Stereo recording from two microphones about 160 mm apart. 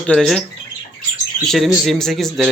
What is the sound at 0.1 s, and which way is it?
Speech, 5° left (ahead or behind).